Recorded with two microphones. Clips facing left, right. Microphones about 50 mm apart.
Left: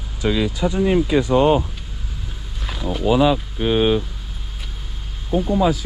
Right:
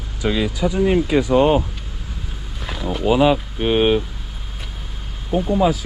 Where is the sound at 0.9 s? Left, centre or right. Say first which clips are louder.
Even; right.